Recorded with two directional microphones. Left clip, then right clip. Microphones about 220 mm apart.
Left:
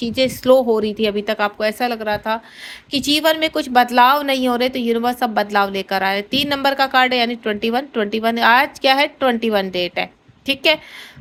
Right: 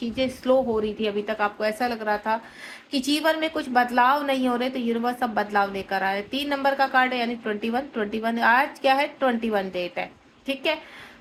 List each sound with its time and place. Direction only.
0.0 s a woman's voice: 45° left (ahead or behind)